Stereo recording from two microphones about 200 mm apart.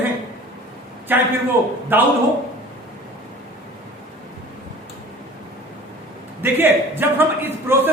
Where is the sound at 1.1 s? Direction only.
10° right (ahead or behind).